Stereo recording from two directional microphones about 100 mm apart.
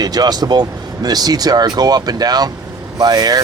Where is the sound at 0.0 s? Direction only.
40° right (ahead or behind).